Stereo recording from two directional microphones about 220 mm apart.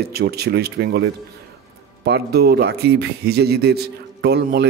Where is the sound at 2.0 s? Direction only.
45° right (ahead or behind).